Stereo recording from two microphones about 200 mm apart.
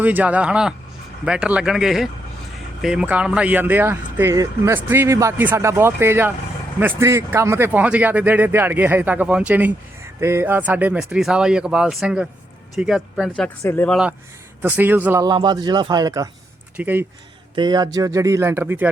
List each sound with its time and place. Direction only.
0.0 s speech: 10° right (ahead or behind)
13.6 s speech: 10° left (ahead or behind)
13.9 s speech: 5° right (ahead or behind)
17.5 s speech: 20° right (ahead or behind)